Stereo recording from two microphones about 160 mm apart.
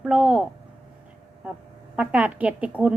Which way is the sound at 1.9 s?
10° right (ahead or behind).